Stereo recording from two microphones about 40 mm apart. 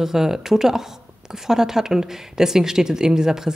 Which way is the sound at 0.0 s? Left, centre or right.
Centre.